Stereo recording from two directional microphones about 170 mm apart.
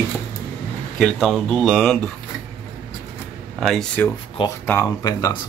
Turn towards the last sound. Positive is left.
turn(degrees=20)  # may be behind; listen again after turning